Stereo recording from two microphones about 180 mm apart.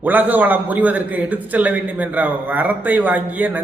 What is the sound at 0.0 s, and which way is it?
A man's voice, 10° right (ahead or behind).